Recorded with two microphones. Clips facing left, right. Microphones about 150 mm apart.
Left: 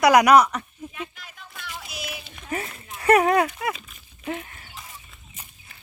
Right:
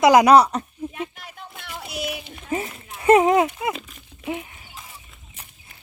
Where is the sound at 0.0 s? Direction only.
25° right (ahead or behind).